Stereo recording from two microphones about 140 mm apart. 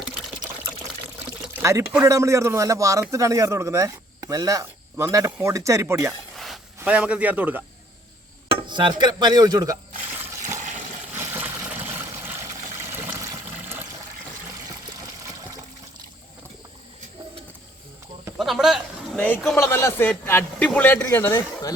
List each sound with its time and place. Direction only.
1.6 s speech: 20° right (ahead or behind)
6.3 s a sound: centre (ahead or behind)
6.7 s a man's voice: 10° right (ahead or behind)
8.4 s dishes: 35° right (ahead or behind)
10.1 s water: 15° right (ahead or behind)
13.3 s water: 15° right (ahead or behind)
18.3 s a sound: centre (ahead or behind)
19.5 s a man's voice: 20° left (ahead or behind)